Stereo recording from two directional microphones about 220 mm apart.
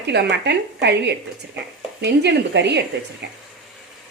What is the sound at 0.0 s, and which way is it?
Speech, 50° right (ahead or behind).